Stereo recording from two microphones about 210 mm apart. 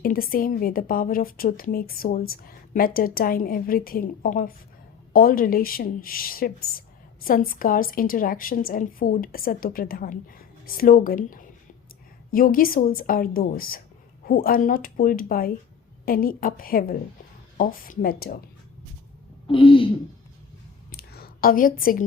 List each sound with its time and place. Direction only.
0.0 s a woman's voice: 45° left (ahead or behind)
19.5 s speech: 25° left (ahead or behind)
20.9 s a sound: 45° left (ahead or behind)